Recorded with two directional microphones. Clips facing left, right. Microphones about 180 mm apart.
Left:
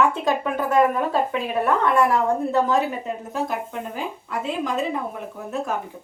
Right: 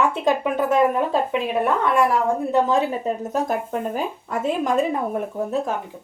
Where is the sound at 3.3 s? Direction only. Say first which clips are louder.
Right 2 dB; 45° right (ahead or behind).